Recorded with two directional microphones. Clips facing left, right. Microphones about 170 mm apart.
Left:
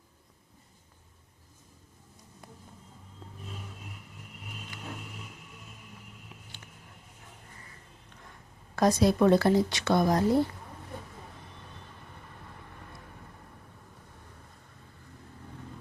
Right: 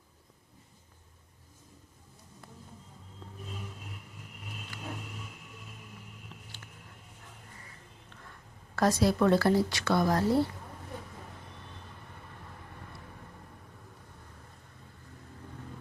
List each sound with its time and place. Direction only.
6.3 s vehicle: 10° left (ahead or behind)
8.7 s speech: 15° left (ahead or behind)